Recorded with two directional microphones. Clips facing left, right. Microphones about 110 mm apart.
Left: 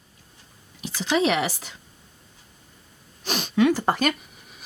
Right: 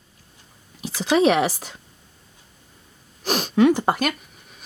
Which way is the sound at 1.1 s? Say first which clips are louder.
Right 5 dB; 45° right (ahead or behind).